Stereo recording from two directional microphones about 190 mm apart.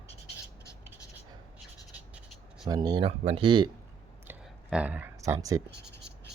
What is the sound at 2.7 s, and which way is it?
Speech, 20° right (ahead or behind).